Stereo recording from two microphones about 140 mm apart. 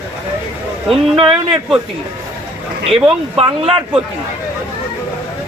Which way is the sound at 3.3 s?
45° right (ahead or behind).